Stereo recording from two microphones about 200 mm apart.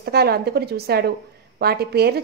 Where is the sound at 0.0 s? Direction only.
50° right (ahead or behind).